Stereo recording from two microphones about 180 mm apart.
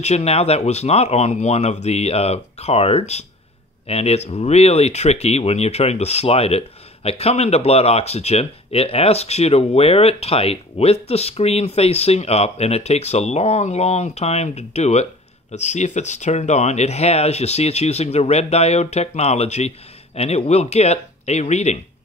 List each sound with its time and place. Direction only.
0.0 s speech: 35° left (ahead or behind)